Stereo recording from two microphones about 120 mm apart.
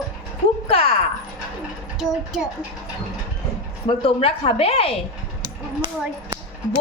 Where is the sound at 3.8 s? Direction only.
50° left (ahead or behind).